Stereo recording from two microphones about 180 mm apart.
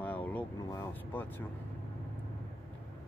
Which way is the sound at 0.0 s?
10° left (ahead or behind).